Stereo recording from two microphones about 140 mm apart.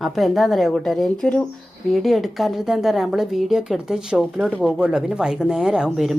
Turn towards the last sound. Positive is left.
turn(degrees=0)  # may be behind; listen again after turning